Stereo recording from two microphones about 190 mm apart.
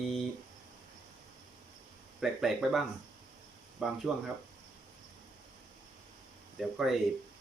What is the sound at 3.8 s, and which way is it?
Speech, centre (ahead or behind).